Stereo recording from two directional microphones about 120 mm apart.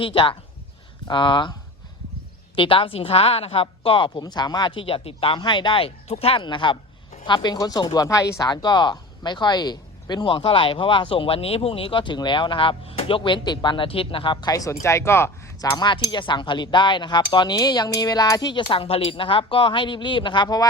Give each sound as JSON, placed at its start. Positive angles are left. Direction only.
{"t": 0.0, "sound": "speech", "side_deg": 45}
{"t": 1.0, "sound": "cutlery", "side_deg": 40}
{"t": 2.6, "sound": "speech", "side_deg": 50}
{"t": 14.5, "sound": "speech", "side_deg": 25}
{"t": 15.8, "sound": "cutlery", "side_deg": 40}